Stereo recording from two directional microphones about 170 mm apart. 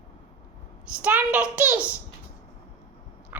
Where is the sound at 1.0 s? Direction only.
10° right (ahead or behind).